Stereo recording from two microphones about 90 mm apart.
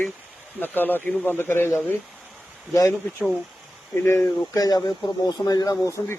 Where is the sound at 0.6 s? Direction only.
20° left (ahead or behind).